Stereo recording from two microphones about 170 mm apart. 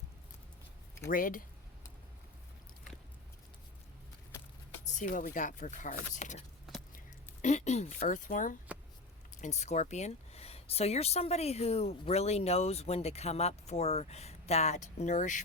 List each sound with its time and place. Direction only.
1.0 s speech: 55° left (ahead or behind)
4.9 s speech: 45° left (ahead or behind)
7.4 s speech: 40° left (ahead or behind)